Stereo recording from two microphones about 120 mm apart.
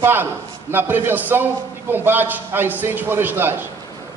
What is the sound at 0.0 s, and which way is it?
A man's voice, 20° right (ahead or behind).